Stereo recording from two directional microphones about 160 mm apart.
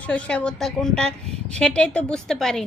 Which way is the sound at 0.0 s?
5° left (ahead or behind).